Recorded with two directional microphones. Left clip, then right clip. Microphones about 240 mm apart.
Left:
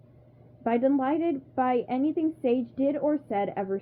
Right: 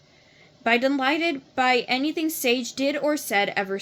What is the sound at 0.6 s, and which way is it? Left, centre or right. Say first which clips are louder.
A woman's voice: right 4 dB; centre.